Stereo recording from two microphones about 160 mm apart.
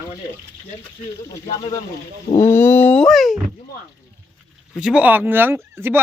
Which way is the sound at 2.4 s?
15° left (ahead or behind).